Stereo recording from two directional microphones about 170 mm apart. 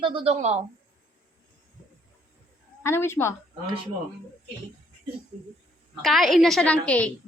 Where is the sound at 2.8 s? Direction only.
15° left (ahead or behind).